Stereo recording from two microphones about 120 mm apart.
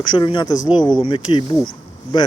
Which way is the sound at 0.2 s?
40° left (ahead or behind).